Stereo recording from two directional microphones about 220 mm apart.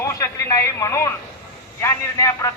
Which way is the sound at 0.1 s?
15° left (ahead or behind).